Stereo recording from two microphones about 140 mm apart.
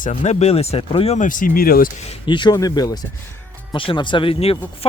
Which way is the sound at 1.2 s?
70° left (ahead or behind).